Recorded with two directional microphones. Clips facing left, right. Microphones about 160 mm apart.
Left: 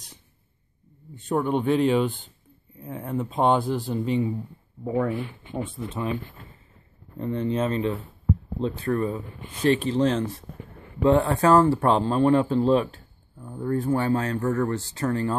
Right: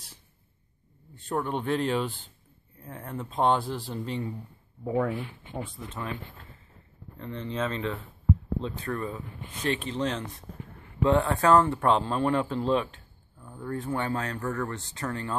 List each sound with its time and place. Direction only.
1.1 s speech: centre (ahead or behind)
5.8 s speech: 15° left (ahead or behind)
7.2 s speech: 15° left (ahead or behind)
8.6 s speech: 35° left (ahead or behind)